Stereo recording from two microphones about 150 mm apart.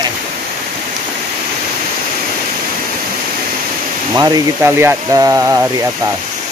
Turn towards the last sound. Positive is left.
turn(degrees=-20)  # may be behind; listen again after turning